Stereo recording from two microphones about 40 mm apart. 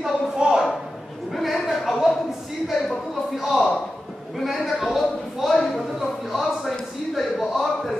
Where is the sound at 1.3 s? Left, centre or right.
Centre.